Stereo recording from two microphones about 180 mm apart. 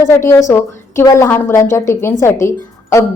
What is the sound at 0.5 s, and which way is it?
A woman's voice, 15° left (ahead or behind).